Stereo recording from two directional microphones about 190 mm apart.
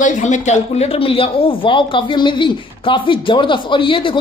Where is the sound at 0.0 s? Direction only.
40° left (ahead or behind).